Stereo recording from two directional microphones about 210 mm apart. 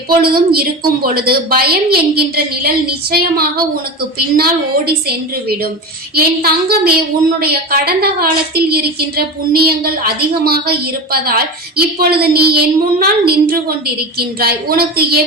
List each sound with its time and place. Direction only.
0.1 s a woman's voice: 45° right (ahead or behind)